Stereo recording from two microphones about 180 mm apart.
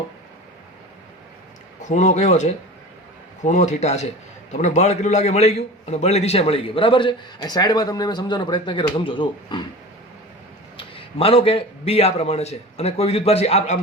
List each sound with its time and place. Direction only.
1.8 s a man's voice: 40° left (ahead or behind); by 9.6 s 25° left (ahead or behind)
10.8 s a man's voice: 30° left (ahead or behind)